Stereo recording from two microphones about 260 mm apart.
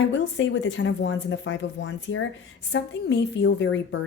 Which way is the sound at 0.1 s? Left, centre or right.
Left.